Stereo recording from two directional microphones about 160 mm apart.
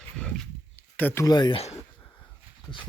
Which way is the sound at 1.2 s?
25° left (ahead or behind).